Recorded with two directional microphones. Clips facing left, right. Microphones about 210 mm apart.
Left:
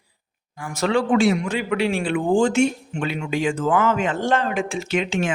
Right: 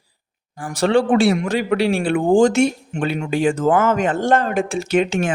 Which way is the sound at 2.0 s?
50° right (ahead or behind).